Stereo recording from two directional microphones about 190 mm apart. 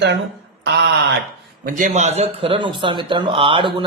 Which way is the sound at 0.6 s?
65° right (ahead or behind).